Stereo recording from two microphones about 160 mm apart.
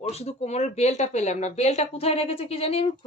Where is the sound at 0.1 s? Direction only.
40° left (ahead or behind).